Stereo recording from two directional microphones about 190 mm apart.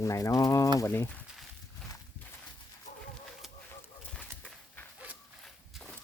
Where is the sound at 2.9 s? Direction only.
40° left (ahead or behind).